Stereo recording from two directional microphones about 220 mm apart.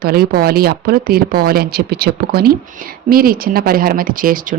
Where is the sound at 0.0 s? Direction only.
45° right (ahead or behind).